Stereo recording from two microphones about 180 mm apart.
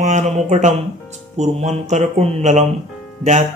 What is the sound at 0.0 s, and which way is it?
Speech, 40° right (ahead or behind).